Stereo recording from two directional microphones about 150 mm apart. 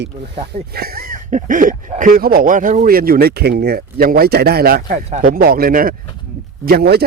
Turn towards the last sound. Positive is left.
turn(degrees=-90)